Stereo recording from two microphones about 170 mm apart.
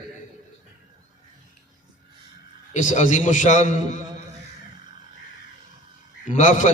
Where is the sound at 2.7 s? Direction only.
45° left (ahead or behind).